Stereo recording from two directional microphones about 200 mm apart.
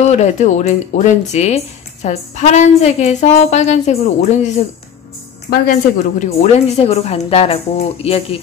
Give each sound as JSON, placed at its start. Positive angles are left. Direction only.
{"t": 0.0, "sound": "speech", "side_deg": 35}